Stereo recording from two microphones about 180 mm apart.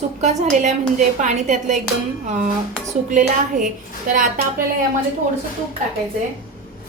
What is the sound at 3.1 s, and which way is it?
A woman's voice, 45° right (ahead or behind).